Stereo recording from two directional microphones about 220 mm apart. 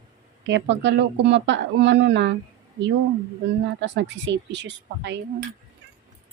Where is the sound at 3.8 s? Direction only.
55° right (ahead or behind).